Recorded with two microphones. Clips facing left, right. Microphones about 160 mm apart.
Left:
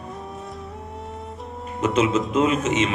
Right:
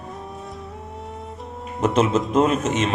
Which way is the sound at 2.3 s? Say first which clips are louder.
Right 3 dB; 45° right (ahead or behind).